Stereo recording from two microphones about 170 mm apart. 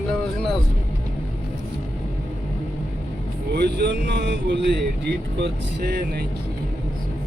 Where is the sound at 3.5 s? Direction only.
75° right (ahead or behind).